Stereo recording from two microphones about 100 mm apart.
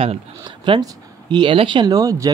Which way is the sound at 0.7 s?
50° right (ahead or behind).